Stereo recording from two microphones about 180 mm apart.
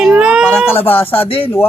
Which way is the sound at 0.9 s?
10° left (ahead or behind).